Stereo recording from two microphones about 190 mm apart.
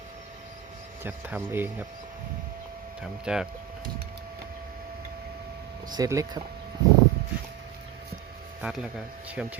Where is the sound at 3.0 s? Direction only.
5° right (ahead or behind).